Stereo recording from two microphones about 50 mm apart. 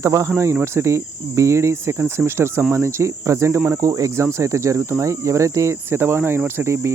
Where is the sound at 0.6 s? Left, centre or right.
Right.